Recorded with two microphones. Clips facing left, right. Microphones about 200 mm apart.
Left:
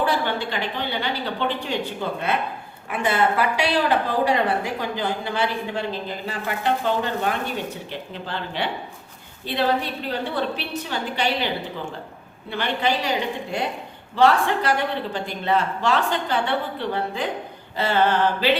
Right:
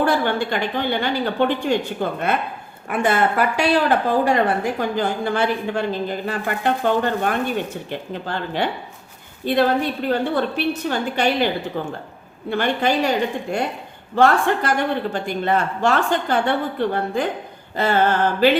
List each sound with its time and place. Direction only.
0.0 s a woman's voice: 50° right (ahead or behind)
14.2 s a woman's voice: 50° right (ahead or behind)